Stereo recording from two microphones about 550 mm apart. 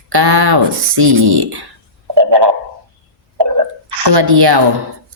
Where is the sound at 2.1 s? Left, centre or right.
Right.